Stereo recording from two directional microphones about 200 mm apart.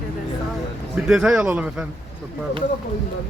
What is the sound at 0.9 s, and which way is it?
Speech, 5° right (ahead or behind).